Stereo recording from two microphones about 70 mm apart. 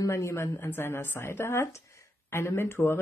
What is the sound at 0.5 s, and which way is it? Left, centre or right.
Speech, left.